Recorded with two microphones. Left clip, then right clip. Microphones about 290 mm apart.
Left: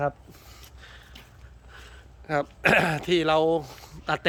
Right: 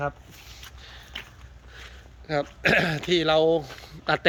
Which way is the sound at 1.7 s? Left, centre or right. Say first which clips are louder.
Right 3 dB; centre.